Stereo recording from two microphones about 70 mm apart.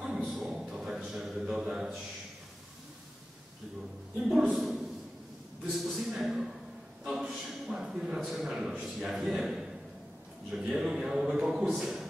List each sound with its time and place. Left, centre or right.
0.0 s a sound: centre
4.2 s a man's voice: centre
5.7 s a man's voice: centre
10.7 s a man's voice: centre